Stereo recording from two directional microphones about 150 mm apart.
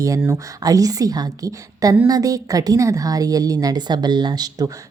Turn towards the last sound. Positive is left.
turn(degrees=-25)  # may be behind; listen again after turning